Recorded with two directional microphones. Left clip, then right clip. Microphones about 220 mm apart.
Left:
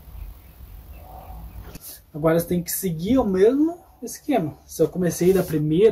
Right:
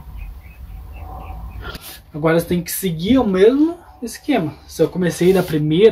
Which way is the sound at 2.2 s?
10° left (ahead or behind).